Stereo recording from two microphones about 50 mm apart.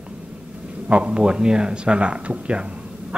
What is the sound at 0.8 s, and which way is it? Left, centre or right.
Speech, right.